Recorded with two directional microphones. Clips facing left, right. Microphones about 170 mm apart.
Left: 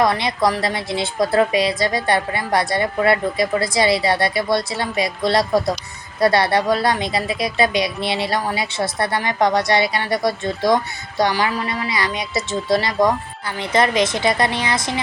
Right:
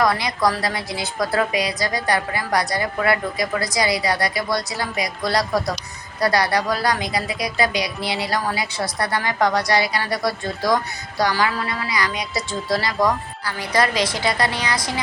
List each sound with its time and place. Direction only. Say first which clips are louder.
0.0 s speech: left 2 dB; 25° left (ahead or behind)